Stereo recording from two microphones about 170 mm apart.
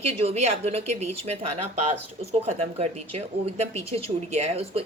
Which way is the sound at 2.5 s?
40° right (ahead or behind).